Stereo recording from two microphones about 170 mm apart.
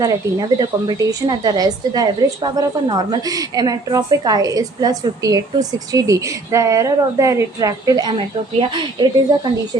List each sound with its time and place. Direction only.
0.0 s a woman's voice: 25° right (ahead or behind)